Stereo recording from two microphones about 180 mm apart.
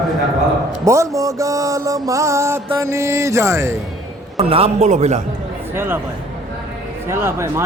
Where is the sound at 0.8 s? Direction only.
15° right (ahead or behind).